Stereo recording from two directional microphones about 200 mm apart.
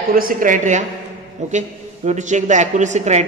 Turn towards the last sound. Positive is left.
turn(degrees=-35)  # may be behind; listen again after turning